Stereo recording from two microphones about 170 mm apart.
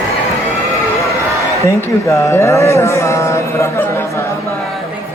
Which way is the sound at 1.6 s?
15° left (ahead or behind).